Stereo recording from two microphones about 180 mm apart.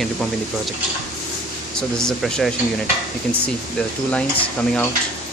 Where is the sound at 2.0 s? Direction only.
5° left (ahead or behind).